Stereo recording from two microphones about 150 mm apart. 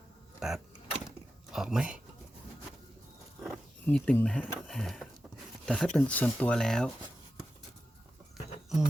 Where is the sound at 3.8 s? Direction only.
10° left (ahead or behind).